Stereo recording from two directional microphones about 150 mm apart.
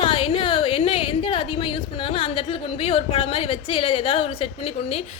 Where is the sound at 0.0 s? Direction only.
35° left (ahead or behind).